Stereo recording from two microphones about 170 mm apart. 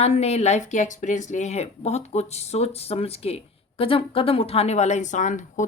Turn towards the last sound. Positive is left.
turn(degrees=45)  # may be behind; listen again after turning